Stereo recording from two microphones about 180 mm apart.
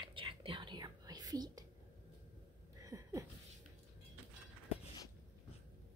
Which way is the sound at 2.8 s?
20° right (ahead or behind).